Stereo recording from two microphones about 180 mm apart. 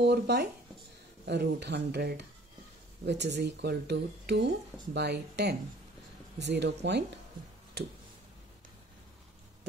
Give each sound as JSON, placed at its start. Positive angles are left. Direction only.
{"t": 0.0, "sound": "speech", "side_deg": -65}